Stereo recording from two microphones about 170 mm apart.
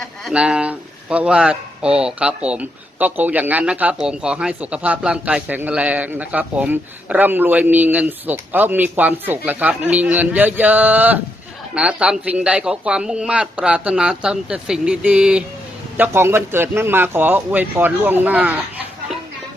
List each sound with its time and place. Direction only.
0.0 s a man's voice: 5° right (ahead or behind)